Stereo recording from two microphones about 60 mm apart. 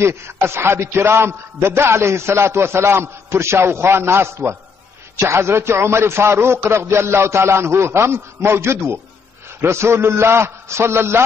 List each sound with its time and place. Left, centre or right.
0.0 s a man's voice: right